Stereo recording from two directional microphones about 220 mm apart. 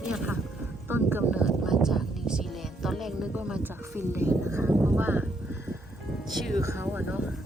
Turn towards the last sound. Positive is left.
turn(degrees=-10)  # may be behind; listen again after turning